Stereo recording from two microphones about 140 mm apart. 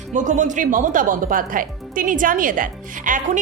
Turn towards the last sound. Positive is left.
turn(degrees=-75)  # may be behind; listen again after turning